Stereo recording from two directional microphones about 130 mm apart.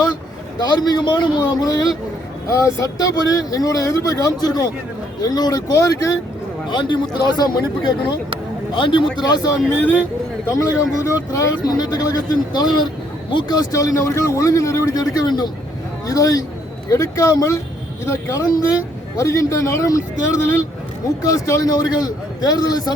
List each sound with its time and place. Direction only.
0.7 s speech: 35° left (ahead or behind)
8.7 s speech: 40° left (ahead or behind)